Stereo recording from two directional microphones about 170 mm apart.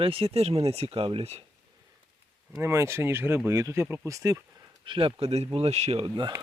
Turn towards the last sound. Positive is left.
turn(degrees=-25)  # may be behind; listen again after turning